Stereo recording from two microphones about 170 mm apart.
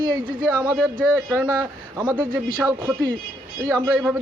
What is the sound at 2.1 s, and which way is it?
Speech, 25° right (ahead or behind).